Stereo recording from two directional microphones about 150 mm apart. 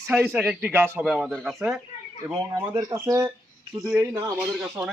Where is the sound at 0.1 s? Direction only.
10° right (ahead or behind).